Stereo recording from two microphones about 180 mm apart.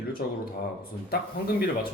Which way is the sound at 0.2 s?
60° left (ahead or behind).